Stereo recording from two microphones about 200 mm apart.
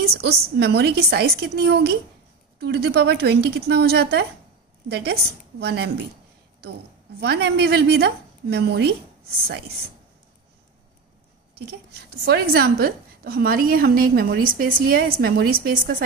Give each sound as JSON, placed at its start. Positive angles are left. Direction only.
{"t": 0.0, "sound": "a sound", "side_deg": -55}
{"t": 0.6, "sound": "a woman's voice", "side_deg": -55}
{"t": 7.2, "sound": "a woman's voice", "side_deg": -55}
{"t": 12.3, "sound": "a woman's voice", "side_deg": -55}